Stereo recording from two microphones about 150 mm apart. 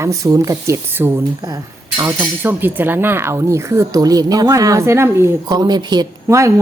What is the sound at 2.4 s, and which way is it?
Speech, 15° right (ahead or behind).